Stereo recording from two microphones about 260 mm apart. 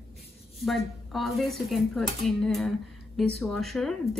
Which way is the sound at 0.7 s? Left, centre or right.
Centre.